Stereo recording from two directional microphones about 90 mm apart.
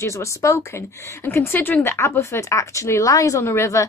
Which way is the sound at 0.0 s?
35° left (ahead or behind).